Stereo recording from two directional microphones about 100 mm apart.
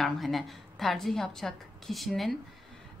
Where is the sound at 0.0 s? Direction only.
Centre (ahead or behind).